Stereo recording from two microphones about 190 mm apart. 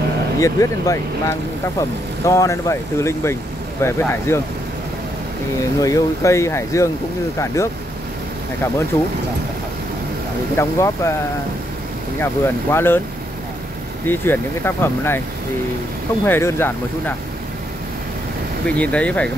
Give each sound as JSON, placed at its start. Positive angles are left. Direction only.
{"t": 0.4, "sound": "speech", "side_deg": 15}
{"t": 5.8, "sound": "speech", "side_deg": 15}
{"t": 10.5, "sound": "speech", "side_deg": 15}
{"t": 12.2, "sound": "speech", "side_deg": 10}
{"t": 14.0, "sound": "speech", "side_deg": 10}
{"t": 16.3, "sound": "speech", "side_deg": 10}
{"t": 18.7, "sound": "speech", "side_deg": 5}